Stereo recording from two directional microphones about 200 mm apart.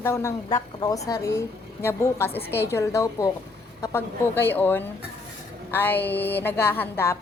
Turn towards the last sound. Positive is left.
turn(degrees=10)  # may be behind; listen again after turning